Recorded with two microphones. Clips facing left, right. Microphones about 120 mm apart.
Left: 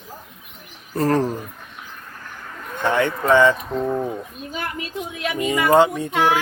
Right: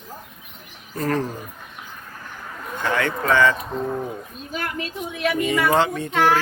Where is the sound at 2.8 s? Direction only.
20° left (ahead or behind).